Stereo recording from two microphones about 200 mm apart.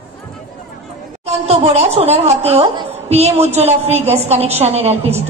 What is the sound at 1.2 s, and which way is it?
A woman's voice, 30° right (ahead or behind).